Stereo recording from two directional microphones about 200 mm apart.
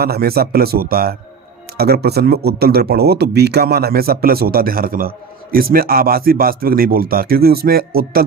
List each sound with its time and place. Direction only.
0.0 s speech: 50° right (ahead or behind)